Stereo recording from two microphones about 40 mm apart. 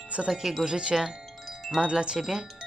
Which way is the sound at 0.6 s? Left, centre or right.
Centre.